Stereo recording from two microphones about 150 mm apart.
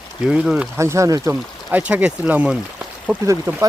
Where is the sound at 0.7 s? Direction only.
20° right (ahead or behind).